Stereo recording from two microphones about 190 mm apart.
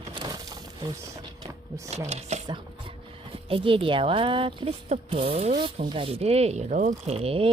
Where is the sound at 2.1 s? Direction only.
35° right (ahead or behind).